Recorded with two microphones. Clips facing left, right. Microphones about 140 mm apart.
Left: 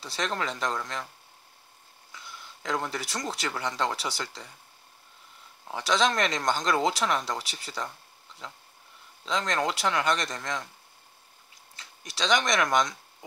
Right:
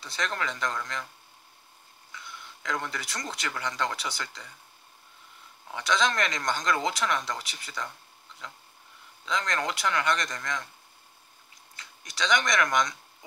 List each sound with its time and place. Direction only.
0.0 s speech: 30° left (ahead or behind)
2.6 s speech: 30° left (ahead or behind)
5.7 s speech: 30° left (ahead or behind)
9.2 s speech: 30° left (ahead or behind)
11.7 s speech: 30° left (ahead or behind)